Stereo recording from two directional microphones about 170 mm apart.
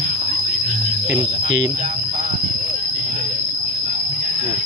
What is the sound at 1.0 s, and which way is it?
Cricket, 20° right (ahead or behind).